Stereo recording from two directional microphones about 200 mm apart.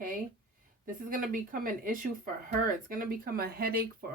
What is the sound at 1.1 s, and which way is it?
A woman's voice, 45° right (ahead or behind).